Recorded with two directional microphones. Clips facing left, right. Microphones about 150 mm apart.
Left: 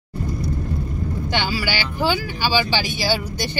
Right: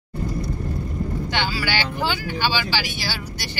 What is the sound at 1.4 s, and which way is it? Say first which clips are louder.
Speech: left 1 dB; 15° left (ahead or behind).